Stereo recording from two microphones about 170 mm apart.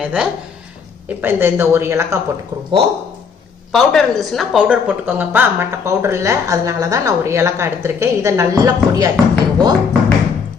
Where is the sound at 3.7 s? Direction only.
Centre (ahead or behind); by 8.5 s 15° right (ahead or behind).